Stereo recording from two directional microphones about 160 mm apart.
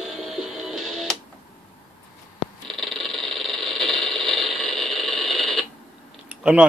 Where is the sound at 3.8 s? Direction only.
Centre (ahead or behind).